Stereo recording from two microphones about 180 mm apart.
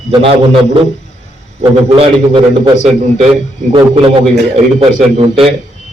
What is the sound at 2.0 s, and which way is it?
A man's voice, 25° right (ahead or behind).